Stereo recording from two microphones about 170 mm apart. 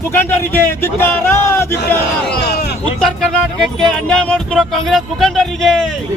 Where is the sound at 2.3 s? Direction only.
70° left (ahead or behind).